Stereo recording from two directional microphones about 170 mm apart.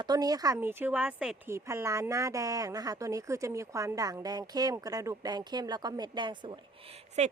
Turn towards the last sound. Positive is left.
turn(degrees=-25)  # may be behind; listen again after turning